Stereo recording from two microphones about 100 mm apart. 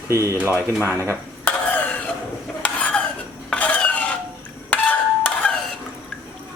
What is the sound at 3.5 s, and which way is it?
Stir, 15° left (ahead or behind).